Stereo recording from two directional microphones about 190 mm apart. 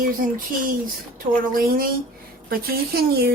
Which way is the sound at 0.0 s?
45° right (ahead or behind).